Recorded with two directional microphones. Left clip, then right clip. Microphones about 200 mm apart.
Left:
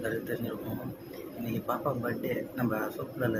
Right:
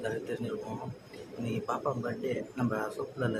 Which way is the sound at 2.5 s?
5° right (ahead or behind).